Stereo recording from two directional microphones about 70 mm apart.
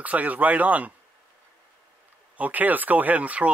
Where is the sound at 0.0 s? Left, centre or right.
Right.